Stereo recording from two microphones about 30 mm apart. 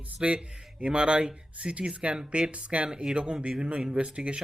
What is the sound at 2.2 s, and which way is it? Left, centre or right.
Speech, right.